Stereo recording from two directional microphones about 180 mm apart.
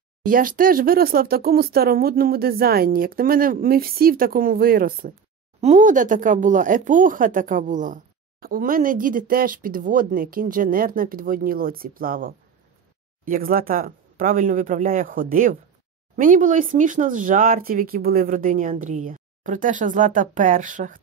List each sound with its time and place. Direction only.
0.2 s speech: 50° right (ahead or behind)
5.6 s speech: 40° right (ahead or behind)